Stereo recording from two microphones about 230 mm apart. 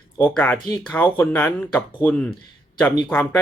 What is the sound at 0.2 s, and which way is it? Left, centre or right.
Speech, centre.